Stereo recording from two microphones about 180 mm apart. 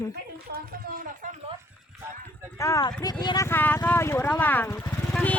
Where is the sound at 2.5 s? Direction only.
15° left (ahead or behind).